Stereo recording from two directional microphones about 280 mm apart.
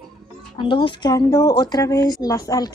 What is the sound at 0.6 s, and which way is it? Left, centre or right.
A woman's voice, centre.